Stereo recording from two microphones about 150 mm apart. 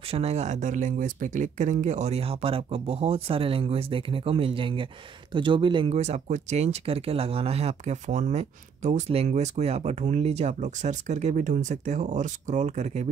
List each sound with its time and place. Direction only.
0.1 s speech: 45° right (ahead or behind)
5.9 s speech: 45° right (ahead or behind)